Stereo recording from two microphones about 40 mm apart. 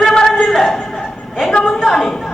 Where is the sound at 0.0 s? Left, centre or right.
Centre.